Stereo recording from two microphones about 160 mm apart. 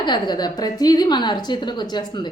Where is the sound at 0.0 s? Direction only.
25° left (ahead or behind).